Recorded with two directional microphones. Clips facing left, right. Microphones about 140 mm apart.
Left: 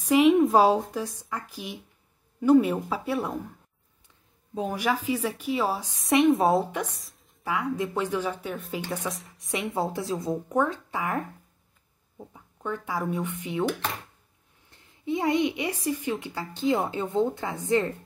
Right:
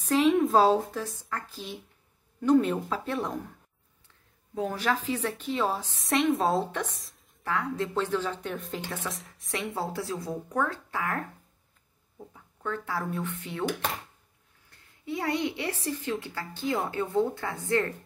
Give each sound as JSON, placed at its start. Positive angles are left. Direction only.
{"t": 0.2, "sound": "speech", "side_deg": 0}
{"t": 0.5, "sound": "speech", "side_deg": 10}
{"t": 4.6, "sound": "speech", "side_deg": 15}
{"t": 8.8, "sound": "speech", "side_deg": 15}
{"t": 9.1, "sound": "a woman's voice", "side_deg": 0}
{"t": 9.7, "sound": "speech", "side_deg": 20}
{"t": 14.7, "sound": "a woman's voice", "side_deg": 20}